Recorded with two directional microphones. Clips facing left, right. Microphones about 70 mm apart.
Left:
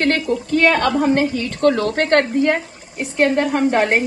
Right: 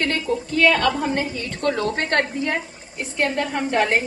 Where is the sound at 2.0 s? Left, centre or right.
Left.